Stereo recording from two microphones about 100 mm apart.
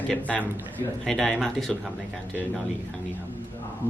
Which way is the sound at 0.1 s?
15° left (ahead or behind).